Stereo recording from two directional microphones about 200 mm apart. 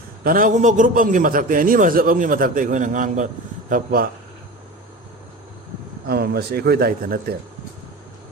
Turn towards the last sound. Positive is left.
turn(degrees=-50)  # may be behind; listen again after turning